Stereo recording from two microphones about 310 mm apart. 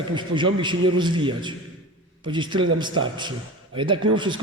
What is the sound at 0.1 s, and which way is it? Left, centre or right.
A man's voice, centre.